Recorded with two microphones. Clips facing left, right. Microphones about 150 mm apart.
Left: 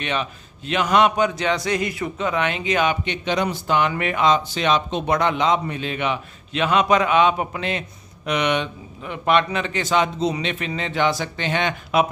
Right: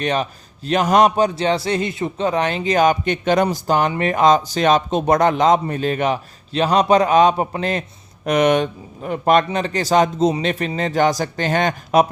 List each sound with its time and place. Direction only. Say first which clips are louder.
0.0 s a man's voice: right 5 dB; 40° right (ahead or behind)